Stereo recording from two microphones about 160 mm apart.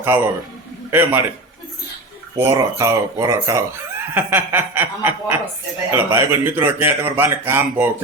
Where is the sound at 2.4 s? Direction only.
20° right (ahead or behind).